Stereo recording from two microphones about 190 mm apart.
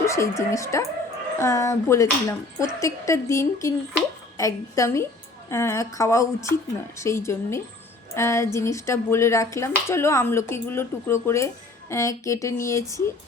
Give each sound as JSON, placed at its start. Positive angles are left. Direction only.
{"t": 0.0, "sound": "speech", "side_deg": 15}